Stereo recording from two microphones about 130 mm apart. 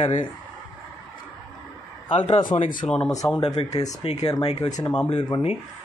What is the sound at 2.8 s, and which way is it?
Speech, 45° left (ahead or behind).